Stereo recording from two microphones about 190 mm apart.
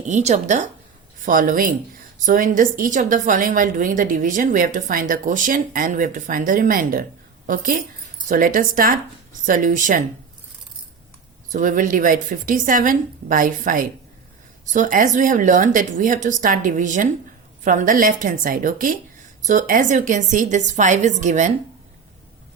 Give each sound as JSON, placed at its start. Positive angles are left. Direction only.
{"t": 0.1, "sound": "a woman's voice", "side_deg": -35}
{"t": 11.4, "sound": "a woman's voice", "side_deg": -45}